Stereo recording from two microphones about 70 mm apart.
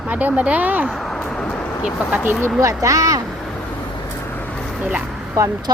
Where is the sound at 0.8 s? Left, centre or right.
Centre.